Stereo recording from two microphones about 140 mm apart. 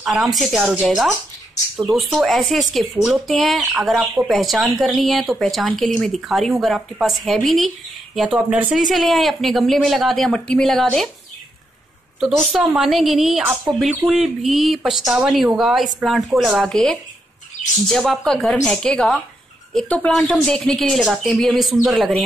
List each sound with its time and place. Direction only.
0.0 s speech: 5° right (ahead or behind)
12.2 s speech: centre (ahead or behind)